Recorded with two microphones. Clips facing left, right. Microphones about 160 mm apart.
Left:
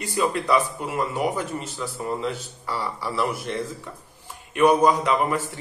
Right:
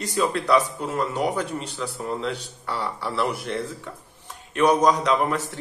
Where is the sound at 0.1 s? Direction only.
5° left (ahead or behind).